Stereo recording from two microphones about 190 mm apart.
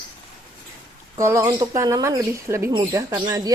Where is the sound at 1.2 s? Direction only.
15° right (ahead or behind).